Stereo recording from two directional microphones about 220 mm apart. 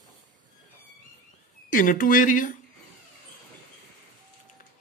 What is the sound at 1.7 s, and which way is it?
Speech, 40° left (ahead or behind).